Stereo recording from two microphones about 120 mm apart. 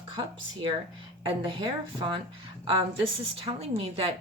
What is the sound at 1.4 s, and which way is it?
Speech, 45° right (ahead or behind).